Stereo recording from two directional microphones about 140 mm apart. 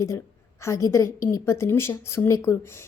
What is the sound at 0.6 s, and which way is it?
A woman's voice, 20° left (ahead or behind).